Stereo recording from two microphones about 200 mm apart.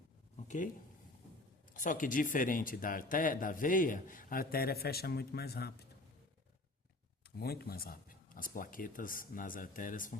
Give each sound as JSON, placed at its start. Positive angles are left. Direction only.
{"t": 0.4, "sound": "speech", "side_deg": 40}
{"t": 1.7, "sound": "speech", "side_deg": 40}
{"t": 7.3, "sound": "speech", "side_deg": 50}